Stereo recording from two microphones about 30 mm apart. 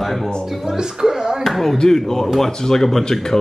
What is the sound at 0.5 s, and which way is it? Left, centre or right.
Speech, centre.